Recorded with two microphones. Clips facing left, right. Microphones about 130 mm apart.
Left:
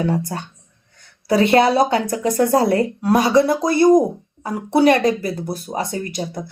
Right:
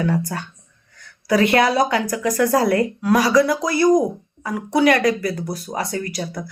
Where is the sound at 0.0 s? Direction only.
25° left (ahead or behind).